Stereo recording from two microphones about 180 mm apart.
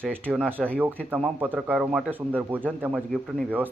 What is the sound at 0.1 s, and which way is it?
Speech, 10° right (ahead or behind).